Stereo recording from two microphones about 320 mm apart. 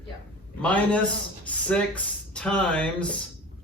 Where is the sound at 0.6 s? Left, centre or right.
Centre.